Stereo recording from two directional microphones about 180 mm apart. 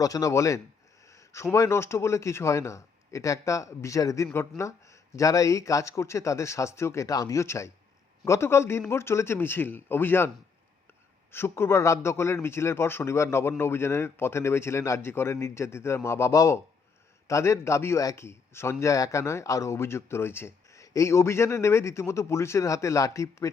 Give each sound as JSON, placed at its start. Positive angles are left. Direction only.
{"t": 0.0, "sound": "speech", "side_deg": 20}
{"t": 1.1, "sound": "a sound", "side_deg": 15}
{"t": 1.5, "sound": "speech", "side_deg": 15}